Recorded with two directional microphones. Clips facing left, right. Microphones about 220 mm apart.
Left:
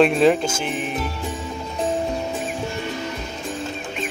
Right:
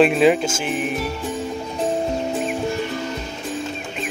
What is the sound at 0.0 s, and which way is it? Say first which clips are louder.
Music: right 1 dB; 5° right (ahead or behind).